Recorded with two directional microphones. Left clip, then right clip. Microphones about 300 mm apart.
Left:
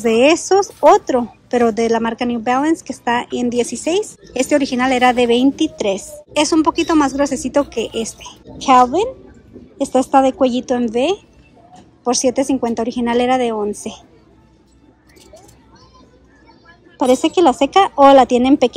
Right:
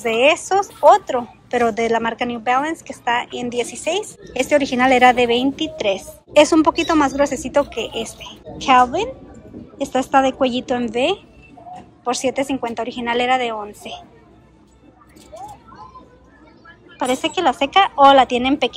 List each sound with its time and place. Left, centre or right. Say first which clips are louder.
0.0 s speech: left 3 dB; centre
17.0 s speech: left 5 dB; centre